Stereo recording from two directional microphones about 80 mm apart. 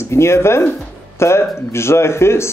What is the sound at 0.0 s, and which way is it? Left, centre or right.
Speech, left.